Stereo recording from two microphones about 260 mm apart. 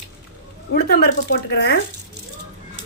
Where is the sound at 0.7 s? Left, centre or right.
Left.